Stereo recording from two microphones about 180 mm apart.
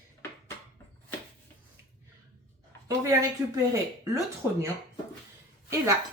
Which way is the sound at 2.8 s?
20° right (ahead or behind).